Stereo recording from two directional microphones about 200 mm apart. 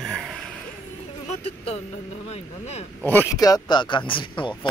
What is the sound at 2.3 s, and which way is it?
Speech, 35° left (ahead or behind).